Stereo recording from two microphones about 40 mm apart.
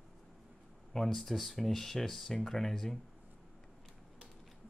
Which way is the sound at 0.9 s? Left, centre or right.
Centre.